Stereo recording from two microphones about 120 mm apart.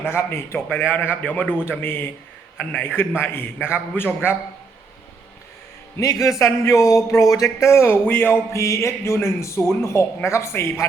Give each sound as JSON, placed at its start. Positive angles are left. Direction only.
{"t": 0.0, "sound": "a man's voice", "side_deg": 20}
{"t": 6.0, "sound": "speech", "side_deg": 25}